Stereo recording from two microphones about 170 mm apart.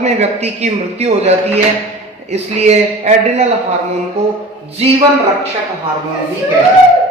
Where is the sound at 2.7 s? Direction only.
40° right (ahead or behind).